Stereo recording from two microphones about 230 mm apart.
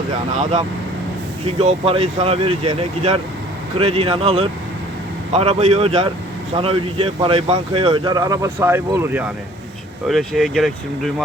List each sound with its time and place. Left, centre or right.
1.5 s speech: right; by 11.1 s centre